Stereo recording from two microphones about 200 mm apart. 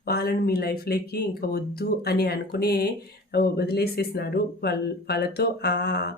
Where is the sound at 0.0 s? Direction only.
50° left (ahead or behind).